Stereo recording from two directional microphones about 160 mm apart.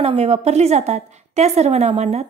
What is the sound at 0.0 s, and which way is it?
A woman's voice, 40° right (ahead or behind).